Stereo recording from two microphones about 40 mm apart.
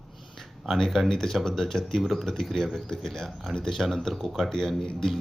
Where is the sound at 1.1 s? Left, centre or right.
Centre.